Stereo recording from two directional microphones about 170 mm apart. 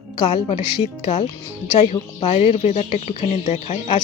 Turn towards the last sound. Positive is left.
turn(degrees=35)  # may be behind; listen again after turning